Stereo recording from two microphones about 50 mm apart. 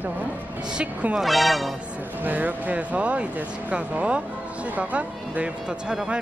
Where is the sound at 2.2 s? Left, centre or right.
Right.